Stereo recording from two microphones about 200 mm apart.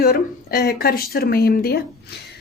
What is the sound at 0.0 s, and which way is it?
Speech, 50° left (ahead or behind).